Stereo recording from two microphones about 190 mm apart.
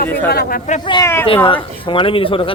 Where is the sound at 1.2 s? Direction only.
30° left (ahead or behind).